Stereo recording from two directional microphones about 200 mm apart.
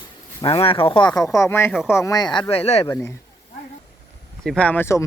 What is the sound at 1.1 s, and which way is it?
Speech, centre (ahead or behind).